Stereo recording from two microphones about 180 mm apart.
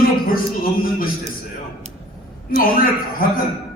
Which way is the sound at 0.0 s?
55° left (ahead or behind).